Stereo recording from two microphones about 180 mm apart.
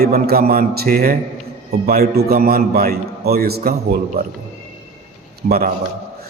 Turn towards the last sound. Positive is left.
turn(degrees=-55)  # may be behind; listen again after turning